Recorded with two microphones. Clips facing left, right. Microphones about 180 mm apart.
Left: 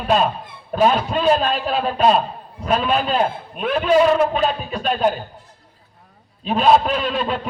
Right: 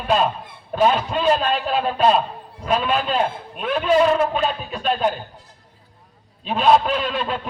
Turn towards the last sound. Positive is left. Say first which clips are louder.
# left 2 dB
turn(degrees=0)  # may be behind; listen again after turning